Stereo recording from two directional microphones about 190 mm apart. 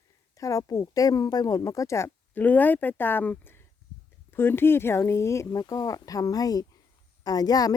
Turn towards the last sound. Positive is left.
turn(degrees=20)  # may be behind; listen again after turning